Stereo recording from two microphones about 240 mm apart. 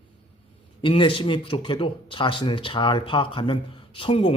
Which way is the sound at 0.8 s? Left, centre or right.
Left.